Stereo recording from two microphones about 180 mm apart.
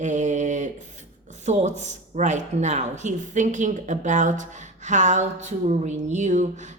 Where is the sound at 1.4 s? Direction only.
40° right (ahead or behind).